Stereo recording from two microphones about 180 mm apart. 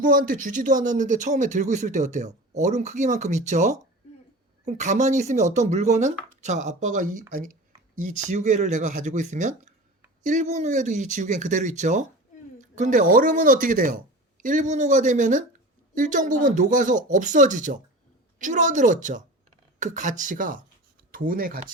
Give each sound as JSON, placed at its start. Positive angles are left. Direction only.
{"t": 0.0, "sound": "speech", "side_deg": -50}